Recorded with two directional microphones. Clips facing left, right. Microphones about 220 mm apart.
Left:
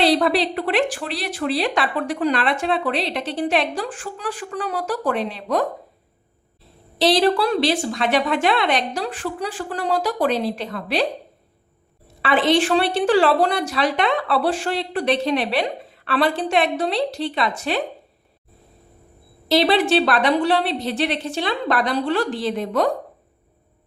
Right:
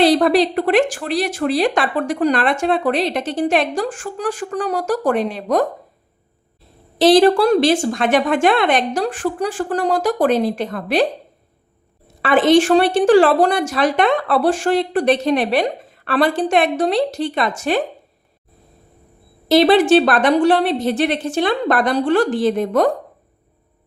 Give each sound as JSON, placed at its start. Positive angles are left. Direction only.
{"t": 0.0, "sound": "a woman's voice", "side_deg": -45}
{"t": 7.0, "sound": "a woman's voice", "side_deg": -50}
{"t": 12.2, "sound": "a woman's voice", "side_deg": -45}
{"t": 19.5, "sound": "a woman's voice", "side_deg": -50}